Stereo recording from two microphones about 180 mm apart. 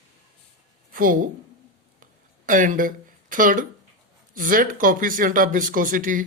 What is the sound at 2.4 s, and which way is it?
Speech, 45° right (ahead or behind).